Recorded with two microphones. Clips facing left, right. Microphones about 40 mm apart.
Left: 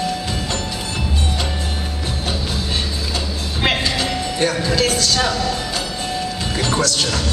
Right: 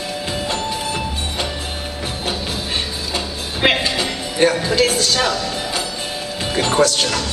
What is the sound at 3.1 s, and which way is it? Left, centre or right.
Music, right.